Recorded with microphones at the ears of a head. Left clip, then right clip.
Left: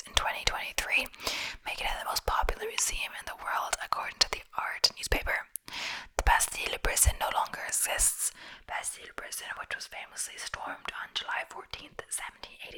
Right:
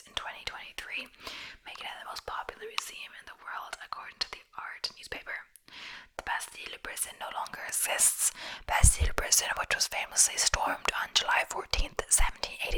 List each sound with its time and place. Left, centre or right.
0.1 s whispering: left
8.7 s whispering: right